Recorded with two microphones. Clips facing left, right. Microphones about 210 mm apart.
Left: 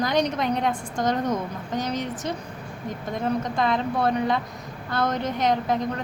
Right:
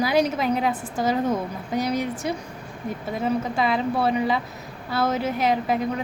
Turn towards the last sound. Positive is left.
turn(degrees=-5)  # may be behind; listen again after turning